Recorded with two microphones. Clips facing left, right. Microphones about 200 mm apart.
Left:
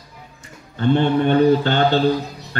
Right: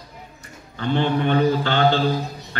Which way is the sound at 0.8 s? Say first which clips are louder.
Left 4 dB; 45° left (ahead or behind).